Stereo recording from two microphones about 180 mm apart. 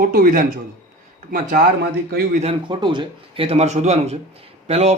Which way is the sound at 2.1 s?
60° right (ahead or behind).